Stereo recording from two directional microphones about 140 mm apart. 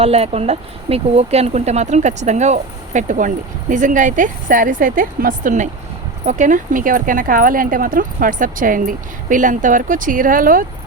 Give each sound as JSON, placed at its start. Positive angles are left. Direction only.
{"t": 0.0, "sound": "speech", "side_deg": -45}